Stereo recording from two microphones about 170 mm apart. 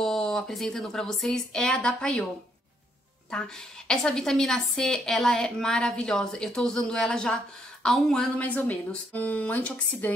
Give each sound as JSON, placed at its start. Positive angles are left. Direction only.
{"t": 0.0, "sound": "a woman's voice", "side_deg": 0}
{"t": 3.3, "sound": "a woman's voice", "side_deg": 5}